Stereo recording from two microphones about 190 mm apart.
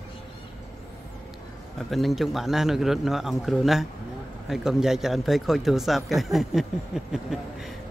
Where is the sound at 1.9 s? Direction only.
Centre (ahead or behind).